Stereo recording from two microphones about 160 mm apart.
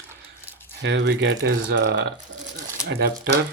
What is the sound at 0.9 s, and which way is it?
Speech, 90° right.